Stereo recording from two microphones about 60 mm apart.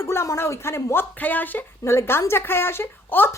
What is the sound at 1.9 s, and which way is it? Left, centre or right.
Speech, left.